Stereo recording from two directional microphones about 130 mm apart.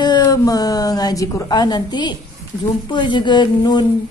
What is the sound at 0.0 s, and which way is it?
A woman's voice, 30° left (ahead or behind).